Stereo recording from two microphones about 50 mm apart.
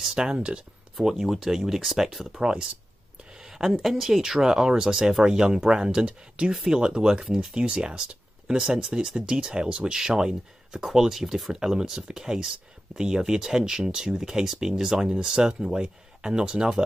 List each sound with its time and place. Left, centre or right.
0.1 s speech: centre
0.9 s speech: centre
2.4 s speech: centre